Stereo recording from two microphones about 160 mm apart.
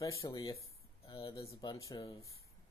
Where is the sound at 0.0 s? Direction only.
20° left (ahead or behind).